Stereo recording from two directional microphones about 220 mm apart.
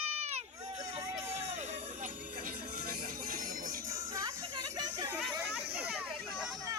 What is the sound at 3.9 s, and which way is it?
Music, 15° right (ahead or behind).